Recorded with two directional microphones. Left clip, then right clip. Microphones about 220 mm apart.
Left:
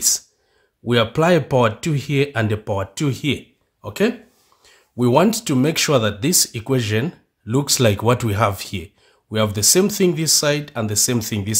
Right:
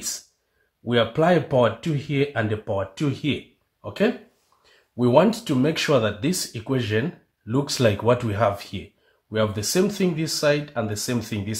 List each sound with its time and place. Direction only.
0.8 s speech: 45° left (ahead or behind)